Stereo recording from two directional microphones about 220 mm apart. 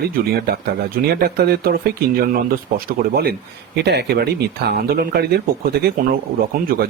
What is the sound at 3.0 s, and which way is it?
Speech, 45° right (ahead or behind).